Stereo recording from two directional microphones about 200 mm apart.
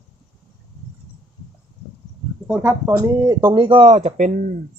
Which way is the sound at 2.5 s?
10° right (ahead or behind).